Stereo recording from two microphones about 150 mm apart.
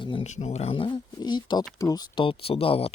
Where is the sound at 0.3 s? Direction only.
50° left (ahead or behind).